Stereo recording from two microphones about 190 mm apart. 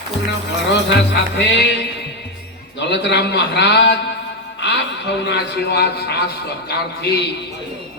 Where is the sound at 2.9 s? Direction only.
65° left (ahead or behind).